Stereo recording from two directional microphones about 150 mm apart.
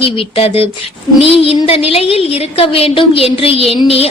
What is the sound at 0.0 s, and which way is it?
Music, 40° left (ahead or behind).